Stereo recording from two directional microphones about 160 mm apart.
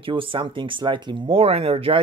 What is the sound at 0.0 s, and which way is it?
Speech, 35° right (ahead or behind).